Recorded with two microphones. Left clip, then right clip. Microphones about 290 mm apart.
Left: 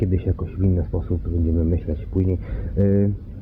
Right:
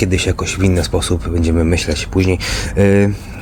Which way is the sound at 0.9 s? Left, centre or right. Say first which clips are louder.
Right 10 dB; right.